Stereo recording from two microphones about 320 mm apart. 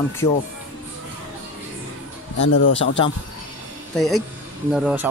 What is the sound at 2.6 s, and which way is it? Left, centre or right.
Speech, left.